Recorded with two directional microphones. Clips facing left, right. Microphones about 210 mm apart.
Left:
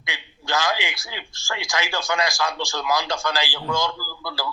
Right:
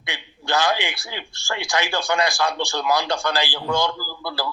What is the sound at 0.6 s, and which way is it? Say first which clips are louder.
Speech: right 3 dB; 55° right (ahead or behind).